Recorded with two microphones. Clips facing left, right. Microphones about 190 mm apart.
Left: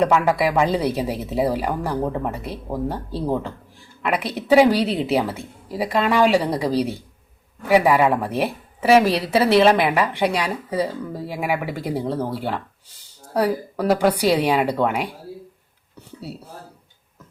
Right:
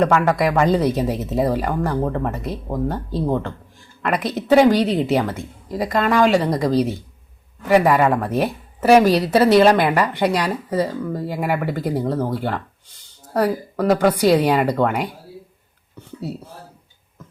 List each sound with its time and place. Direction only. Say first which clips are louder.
0.1 s speech: right 1 dB; 5° left (ahead or behind)
4.2 s a woman's voice: right 4 dB; 30° left (ahead or behind)
4.4 s speech: right 1 dB; 5° left (ahead or behind)